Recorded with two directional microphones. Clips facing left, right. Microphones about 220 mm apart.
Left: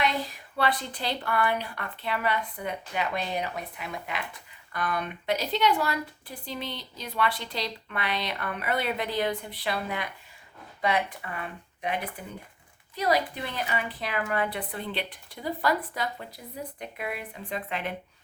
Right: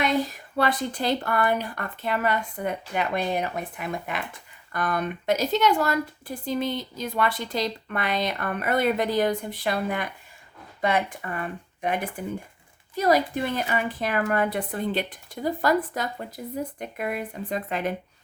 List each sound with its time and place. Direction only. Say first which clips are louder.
0.0 s speech: right 5 dB; 45° right (ahead or behind)
13.0 s speech: right 5 dB; 45° right (ahead or behind)